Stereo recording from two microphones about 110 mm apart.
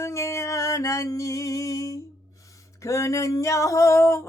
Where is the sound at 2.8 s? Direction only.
30° left (ahead or behind).